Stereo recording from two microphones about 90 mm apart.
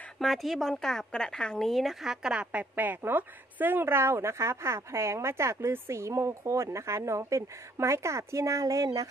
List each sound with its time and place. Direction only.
0.2 s speech: centre (ahead or behind)
2.7 s speech: 20° right (ahead or behind); by 9.1 s 40° right (ahead or behind)